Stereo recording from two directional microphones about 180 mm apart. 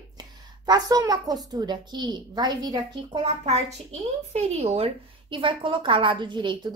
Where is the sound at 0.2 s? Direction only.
20° right (ahead or behind).